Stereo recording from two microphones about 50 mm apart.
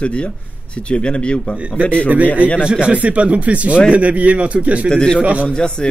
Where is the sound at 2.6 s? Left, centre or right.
Right.